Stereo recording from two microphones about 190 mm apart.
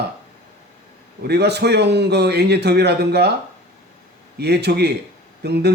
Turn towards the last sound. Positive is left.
turn(degrees=-60)  # may be behind; listen again after turning